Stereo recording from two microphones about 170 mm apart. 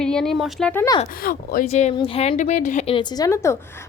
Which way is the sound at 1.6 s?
40° left (ahead or behind).